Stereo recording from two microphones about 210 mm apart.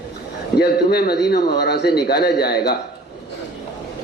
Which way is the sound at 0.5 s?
50° left (ahead or behind).